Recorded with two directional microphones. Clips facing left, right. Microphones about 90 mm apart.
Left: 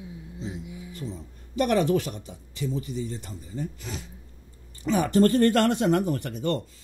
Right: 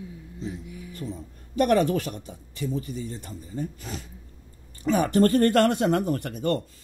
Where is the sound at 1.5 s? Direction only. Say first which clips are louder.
Right 1 dB; 45° right (ahead or behind).